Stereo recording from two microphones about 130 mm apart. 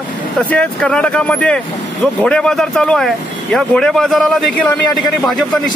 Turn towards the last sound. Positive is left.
turn(degrees=0)  # may be behind; listen again after turning